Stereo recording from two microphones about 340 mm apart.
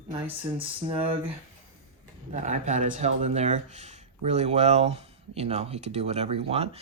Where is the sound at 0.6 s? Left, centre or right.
Centre.